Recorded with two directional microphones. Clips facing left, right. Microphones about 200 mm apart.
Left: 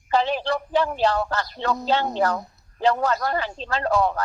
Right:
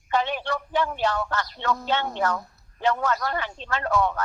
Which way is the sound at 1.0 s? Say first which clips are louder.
Left 4 dB; 35° left (ahead or behind).